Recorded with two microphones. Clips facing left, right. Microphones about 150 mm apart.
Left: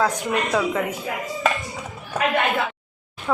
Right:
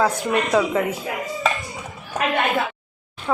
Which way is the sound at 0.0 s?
5° right (ahead or behind).